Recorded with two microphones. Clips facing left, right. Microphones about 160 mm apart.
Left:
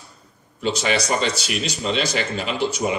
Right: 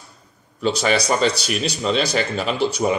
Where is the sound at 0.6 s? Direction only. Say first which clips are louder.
Right 3 dB; 40° right (ahead or behind).